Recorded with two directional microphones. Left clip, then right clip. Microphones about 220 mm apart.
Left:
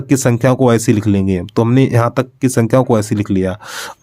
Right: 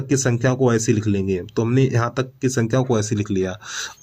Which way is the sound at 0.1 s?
45° left (ahead or behind).